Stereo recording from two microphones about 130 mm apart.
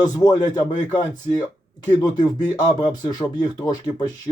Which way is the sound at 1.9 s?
30° left (ahead or behind).